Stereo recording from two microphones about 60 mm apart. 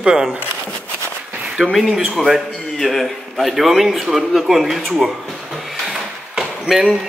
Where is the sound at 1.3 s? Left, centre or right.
Centre.